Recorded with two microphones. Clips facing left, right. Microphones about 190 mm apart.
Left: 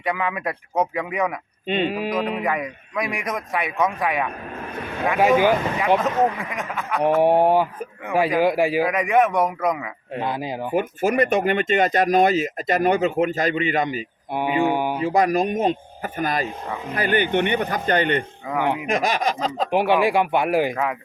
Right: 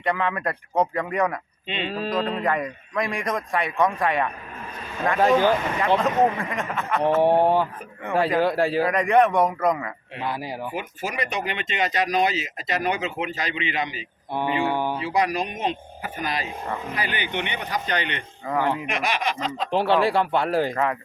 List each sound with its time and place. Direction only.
0.0 s a man's voice: 5° left (ahead or behind)
1.6 s speech: 50° left (ahead or behind)
1.9 s speech: 15° left (ahead or behind)
2.4 s a man's voice: 5° left (ahead or behind)
6.0 s a man's voice: centre (ahead or behind)
7.2 s a man's voice: 10° left (ahead or behind)
10.2 s speech: 20° left (ahead or behind)
10.8 s speech: 55° left (ahead or behind)
14.3 s speech: 10° left (ahead or behind)
14.9 s speech: 45° left (ahead or behind)
18.5 s speech: 15° left (ahead or behind)
18.9 s a sound: 40° left (ahead or behind)
19.7 s speech: 15° left (ahead or behind)